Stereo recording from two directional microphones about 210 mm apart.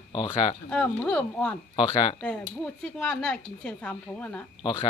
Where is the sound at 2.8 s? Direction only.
5° left (ahead or behind).